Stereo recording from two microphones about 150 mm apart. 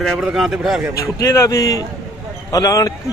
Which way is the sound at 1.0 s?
20° left (ahead or behind).